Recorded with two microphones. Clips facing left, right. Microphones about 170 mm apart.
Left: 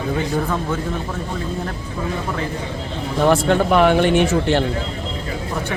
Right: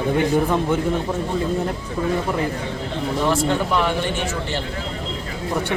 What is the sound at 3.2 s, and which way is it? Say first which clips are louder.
Speech: left 6 dB; 60° left (ahead or behind).